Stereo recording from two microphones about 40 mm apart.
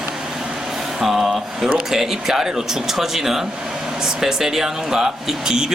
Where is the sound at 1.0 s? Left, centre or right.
Centre.